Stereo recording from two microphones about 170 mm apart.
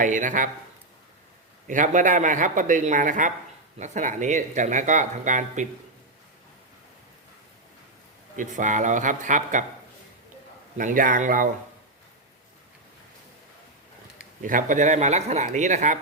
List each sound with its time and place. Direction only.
0.0 s speech: 50° right (ahead or behind)
1.6 s speech: 50° right (ahead or behind)
8.4 s speech: 45° right (ahead or behind)
10.8 s speech: 50° right (ahead or behind)
14.4 s speech: 50° right (ahead or behind)